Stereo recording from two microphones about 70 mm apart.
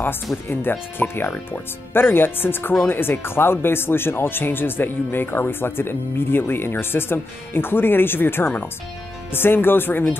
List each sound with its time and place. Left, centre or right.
0.5 s speech: left